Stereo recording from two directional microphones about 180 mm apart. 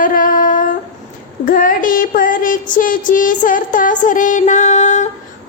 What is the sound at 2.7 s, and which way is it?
Music, 50° left (ahead or behind).